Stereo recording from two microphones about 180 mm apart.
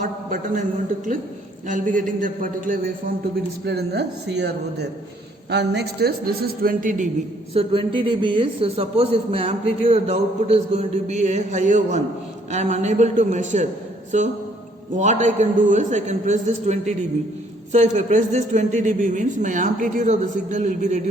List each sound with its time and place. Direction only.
0.0 s a man's voice: 45° right (ahead or behind)
1.6 s speech: 45° right (ahead or behind)
3.7 s a man's voice: 65° right (ahead or behind); by 7.1 s 45° right (ahead or behind)
7.5 s a man's voice: 30° right (ahead or behind)